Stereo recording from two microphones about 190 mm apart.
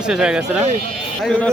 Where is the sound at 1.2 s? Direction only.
5° left (ahead or behind).